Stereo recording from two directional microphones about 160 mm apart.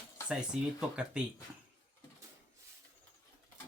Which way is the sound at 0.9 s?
5° right (ahead or behind).